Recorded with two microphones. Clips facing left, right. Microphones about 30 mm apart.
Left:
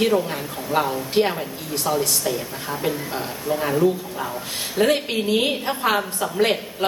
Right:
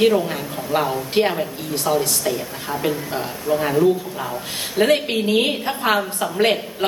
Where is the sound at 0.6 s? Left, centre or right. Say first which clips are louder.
Right 1 dB; centre.